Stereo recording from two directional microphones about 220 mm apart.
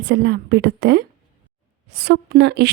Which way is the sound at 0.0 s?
50° right (ahead or behind).